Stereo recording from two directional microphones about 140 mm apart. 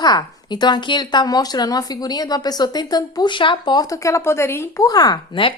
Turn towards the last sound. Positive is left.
turn(degrees=35)  # may be behind; listen again after turning